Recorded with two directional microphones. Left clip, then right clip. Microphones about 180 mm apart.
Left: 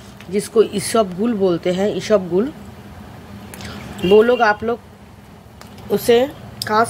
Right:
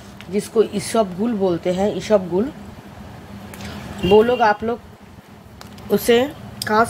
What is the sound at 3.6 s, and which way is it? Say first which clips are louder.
Speech: left 2 dB; 15° left (ahead or behind).